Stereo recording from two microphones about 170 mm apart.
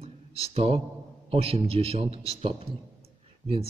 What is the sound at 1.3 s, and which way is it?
A man's voice, 35° right (ahead or behind).